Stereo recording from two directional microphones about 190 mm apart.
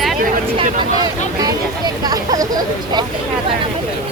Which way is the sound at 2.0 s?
20° right (ahead or behind).